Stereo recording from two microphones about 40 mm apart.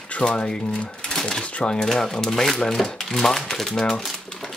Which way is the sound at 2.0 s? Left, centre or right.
Centre.